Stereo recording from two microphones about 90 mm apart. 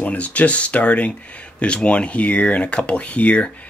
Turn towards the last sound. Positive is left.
turn(degrees=15)  # may be behind; listen again after turning